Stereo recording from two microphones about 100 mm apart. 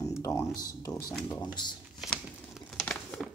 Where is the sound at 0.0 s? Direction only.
30° left (ahead or behind).